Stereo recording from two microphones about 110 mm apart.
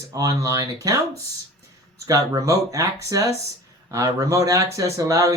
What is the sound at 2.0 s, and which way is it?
Speech, 30° right (ahead or behind).